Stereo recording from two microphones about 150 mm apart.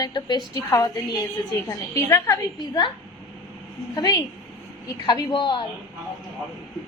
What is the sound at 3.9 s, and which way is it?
A woman's voice, 25° left (ahead or behind).